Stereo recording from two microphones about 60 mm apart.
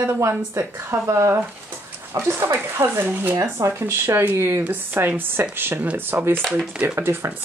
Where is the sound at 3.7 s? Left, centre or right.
Right.